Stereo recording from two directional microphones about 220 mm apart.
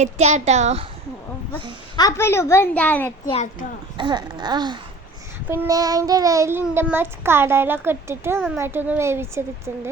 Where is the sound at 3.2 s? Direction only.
30° left (ahead or behind).